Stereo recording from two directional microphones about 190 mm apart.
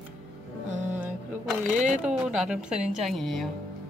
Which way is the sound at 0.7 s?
40° right (ahead or behind).